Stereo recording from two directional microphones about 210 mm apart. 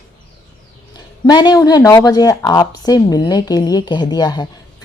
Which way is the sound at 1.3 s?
20° left (ahead or behind).